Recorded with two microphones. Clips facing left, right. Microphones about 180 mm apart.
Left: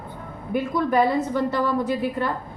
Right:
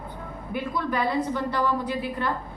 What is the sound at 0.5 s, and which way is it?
A woman's voice, 50° left (ahead or behind).